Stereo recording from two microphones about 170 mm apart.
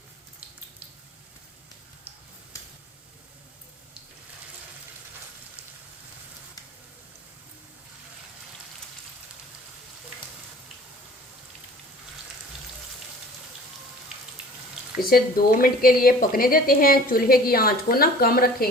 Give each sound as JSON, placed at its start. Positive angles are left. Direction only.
{"t": 15.0, "sound": "a woman's voice", "side_deg": 60}